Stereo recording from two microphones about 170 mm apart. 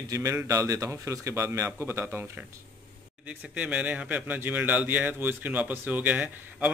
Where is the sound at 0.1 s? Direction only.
15° right (ahead or behind).